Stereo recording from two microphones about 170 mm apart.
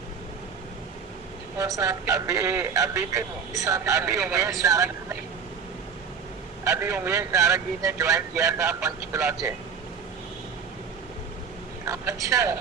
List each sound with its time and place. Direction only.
1.5 s a man's voice: 20° right (ahead or behind)
6.7 s speech: 15° right (ahead or behind)
11.9 s a man's voice: 20° right (ahead or behind)